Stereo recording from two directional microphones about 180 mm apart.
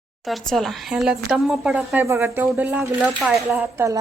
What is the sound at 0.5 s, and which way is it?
A woman's voice, centre (ahead or behind).